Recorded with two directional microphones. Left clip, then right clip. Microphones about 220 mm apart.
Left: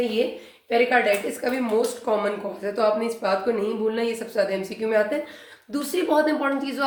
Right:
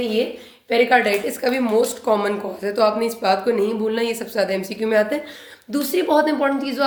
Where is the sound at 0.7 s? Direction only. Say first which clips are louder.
Right 3 dB; 50° right (ahead or behind).